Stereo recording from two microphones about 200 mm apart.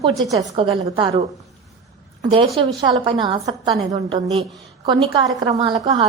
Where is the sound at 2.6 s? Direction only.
25° right (ahead or behind).